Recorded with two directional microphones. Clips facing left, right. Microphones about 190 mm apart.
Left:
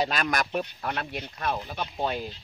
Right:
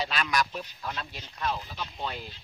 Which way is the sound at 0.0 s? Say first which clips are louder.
Left 2 dB; 45° left (ahead or behind).